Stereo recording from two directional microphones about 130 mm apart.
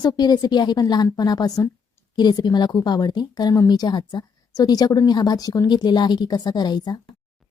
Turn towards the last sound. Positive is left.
turn(degrees=35)  # may be behind; listen again after turning